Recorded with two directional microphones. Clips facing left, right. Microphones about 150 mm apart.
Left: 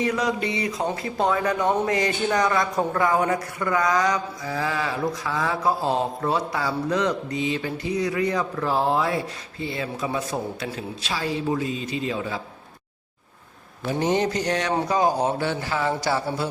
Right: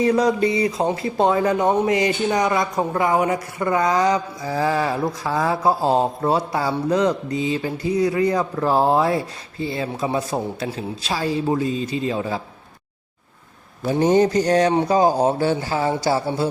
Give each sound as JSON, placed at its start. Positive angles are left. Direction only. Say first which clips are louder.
{"t": 0.0, "sound": "speech", "louder": "right 7 dB", "side_deg": -35}
{"t": 14.0, "sound": "speech", "louder": "right 7 dB", "side_deg": -35}